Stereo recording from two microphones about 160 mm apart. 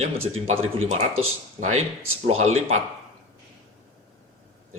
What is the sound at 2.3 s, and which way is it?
Speech, 45° right (ahead or behind).